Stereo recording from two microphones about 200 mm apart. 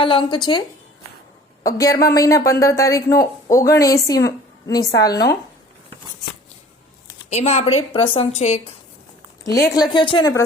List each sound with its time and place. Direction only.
0.0 s speech: 25° left (ahead or behind)
1.6 s speech: 15° left (ahead or behind)
7.3 s a woman's voice: 35° left (ahead or behind)
9.4 s a woman's voice: 15° left (ahead or behind)